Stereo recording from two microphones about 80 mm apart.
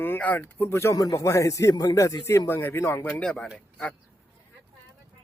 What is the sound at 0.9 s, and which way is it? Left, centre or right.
A man's voice, left.